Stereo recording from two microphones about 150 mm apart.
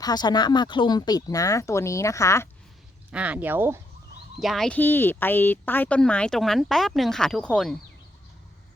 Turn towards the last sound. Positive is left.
turn(degrees=5)  # may be behind; listen again after turning